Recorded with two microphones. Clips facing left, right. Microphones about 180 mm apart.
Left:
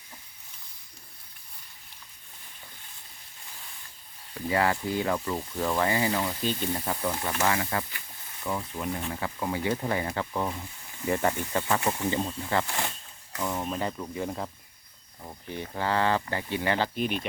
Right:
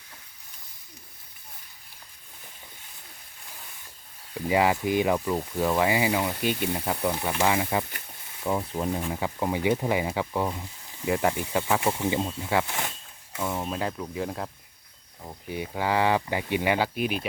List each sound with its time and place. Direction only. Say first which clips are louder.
4.4 s speech: right 3 dB; 15° right (ahead or behind)
8.4 s speech: right 5 dB; 30° right (ahead or behind)
9.2 s speech: right 4 dB; 15° right (ahead or behind)